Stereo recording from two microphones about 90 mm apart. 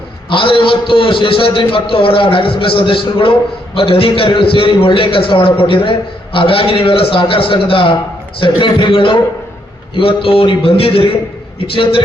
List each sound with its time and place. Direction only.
0.3 s a man's voice: 75° left (ahead or behind)
8.4 s a man's voice: 65° left (ahead or behind); by 11.2 s 90° left
11.6 s a man's voice: 80° left